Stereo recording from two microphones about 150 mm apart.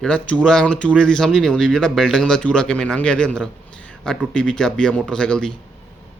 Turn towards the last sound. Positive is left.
turn(degrees=5)  # may be behind; listen again after turning